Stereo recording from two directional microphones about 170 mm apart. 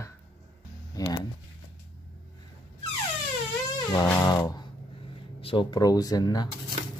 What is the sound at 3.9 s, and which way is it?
Music, 20° left (ahead or behind).